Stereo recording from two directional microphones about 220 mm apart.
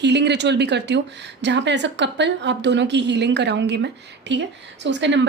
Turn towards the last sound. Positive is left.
turn(degrees=-55)  # may be behind; listen again after turning